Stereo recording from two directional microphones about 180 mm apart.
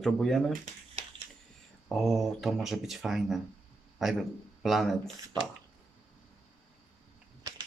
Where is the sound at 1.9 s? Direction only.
Centre (ahead or behind).